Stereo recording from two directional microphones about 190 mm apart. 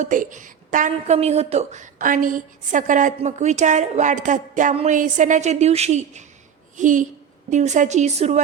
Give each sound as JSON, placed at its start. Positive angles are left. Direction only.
{"t": 0.0, "sound": "a woman's voice", "side_deg": -45}